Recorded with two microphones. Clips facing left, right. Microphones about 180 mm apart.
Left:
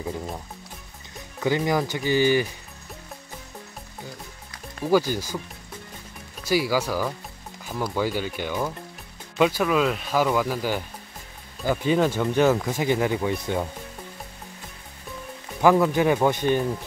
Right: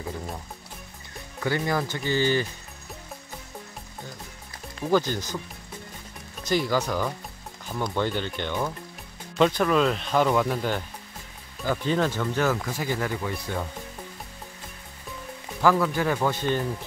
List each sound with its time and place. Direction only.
1.4 s speech: 15° left (ahead or behind)
4.8 s speech: 10° left (ahead or behind)
6.4 s speech: 5° left (ahead or behind)
15.6 s speech: 20° left (ahead or behind)